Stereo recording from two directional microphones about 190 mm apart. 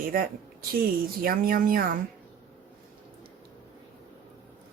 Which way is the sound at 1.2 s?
50° right (ahead or behind).